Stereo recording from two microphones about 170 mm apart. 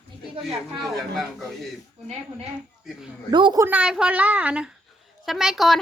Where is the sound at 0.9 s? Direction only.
Centre (ahead or behind).